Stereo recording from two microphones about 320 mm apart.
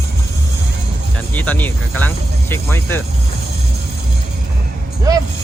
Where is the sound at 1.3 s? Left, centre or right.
Centre.